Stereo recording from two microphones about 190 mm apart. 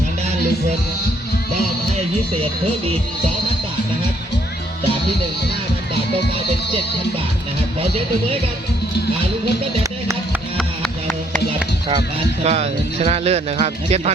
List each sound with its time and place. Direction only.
12.4 s speech: 35° right (ahead or behind)